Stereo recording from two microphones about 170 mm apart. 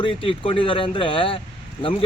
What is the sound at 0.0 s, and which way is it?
A man's voice, 30° left (ahead or behind).